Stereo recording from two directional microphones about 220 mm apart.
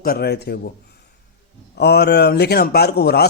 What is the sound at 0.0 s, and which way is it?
Speech, 45° left (ahead or behind).